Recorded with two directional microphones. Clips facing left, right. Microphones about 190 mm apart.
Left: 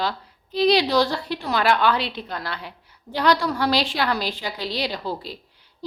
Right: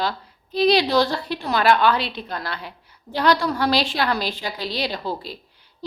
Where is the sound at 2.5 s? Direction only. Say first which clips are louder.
Right 1 dB; 15° left (ahead or behind).